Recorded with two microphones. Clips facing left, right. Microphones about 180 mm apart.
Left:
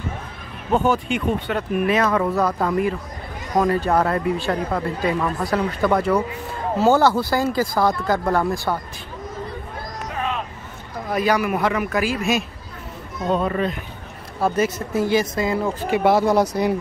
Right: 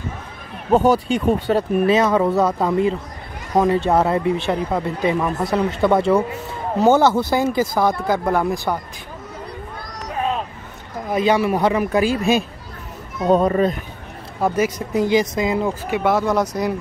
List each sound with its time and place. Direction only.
0.7 s speech: 35° right (ahead or behind); by 8.7 s 15° right (ahead or behind)
11.1 s a man's voice: 25° right (ahead or behind); by 13.7 s 40° right (ahead or behind)
14.4 s speech: 15° right (ahead or behind)
16.1 s speech: 35° left (ahead or behind)